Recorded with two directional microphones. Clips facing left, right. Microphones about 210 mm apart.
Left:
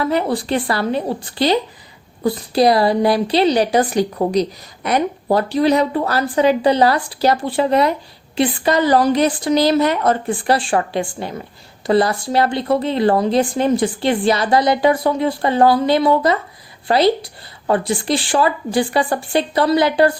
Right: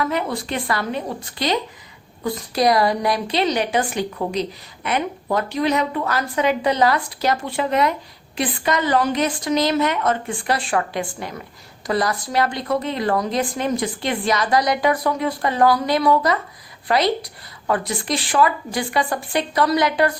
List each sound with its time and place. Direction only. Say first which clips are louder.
0.0 s a woman's voice: left 5 dB; 35° left (ahead or behind)